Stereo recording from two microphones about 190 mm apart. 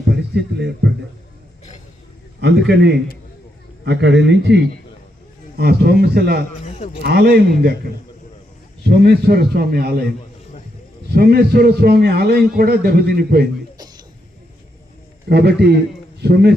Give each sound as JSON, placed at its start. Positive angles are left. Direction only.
{"t": 0.1, "sound": "speech", "side_deg": -65}
{"t": 2.4, "sound": "a man's voice", "side_deg": -65}
{"t": 5.5, "sound": "a man's voice", "side_deg": -55}
{"t": 6.7, "sound": "a man's voice", "side_deg": 35}
{"t": 7.0, "sound": "a man's voice", "side_deg": -55}
{"t": 8.8, "sound": "a man's voice", "side_deg": -55}
{"t": 11.1, "sound": "a man's voice", "side_deg": -55}
{"t": 15.3, "sound": "a man's voice", "side_deg": -60}